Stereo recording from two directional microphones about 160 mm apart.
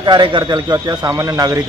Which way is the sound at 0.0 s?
30° right (ahead or behind).